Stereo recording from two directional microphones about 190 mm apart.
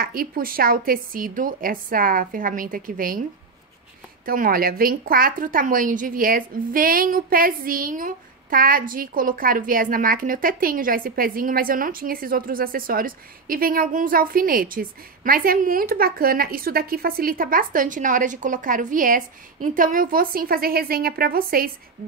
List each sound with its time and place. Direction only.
0.0 s a woman's voice: 50° right (ahead or behind)
4.3 s a woman's voice: 50° right (ahead or behind)